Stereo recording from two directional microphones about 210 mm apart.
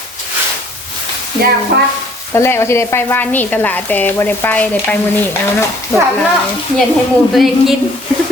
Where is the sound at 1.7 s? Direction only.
50° right (ahead or behind).